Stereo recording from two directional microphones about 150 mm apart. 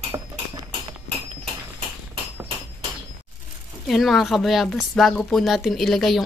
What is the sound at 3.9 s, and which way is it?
A woman's voice, centre (ahead or behind).